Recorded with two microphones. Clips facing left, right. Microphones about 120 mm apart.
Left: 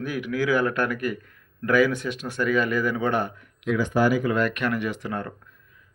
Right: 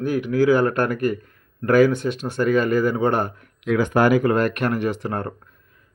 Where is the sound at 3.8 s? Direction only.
60° right (ahead or behind); by 5.5 s 40° right (ahead or behind).